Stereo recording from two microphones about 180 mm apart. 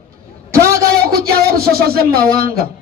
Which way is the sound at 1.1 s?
55° right (ahead or behind).